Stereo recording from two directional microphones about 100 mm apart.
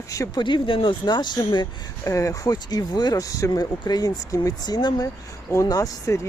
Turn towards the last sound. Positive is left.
turn(degrees=30)  # may be behind; listen again after turning